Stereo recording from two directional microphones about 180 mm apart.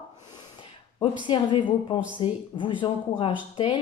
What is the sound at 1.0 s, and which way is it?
Speech, 30° left (ahead or behind).